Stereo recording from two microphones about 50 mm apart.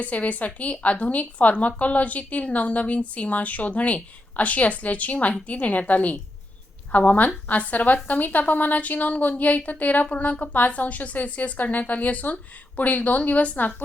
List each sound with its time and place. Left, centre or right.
0.0 s a woman's voice: left